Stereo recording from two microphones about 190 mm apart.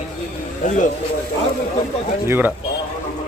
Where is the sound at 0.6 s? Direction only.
40° left (ahead or behind).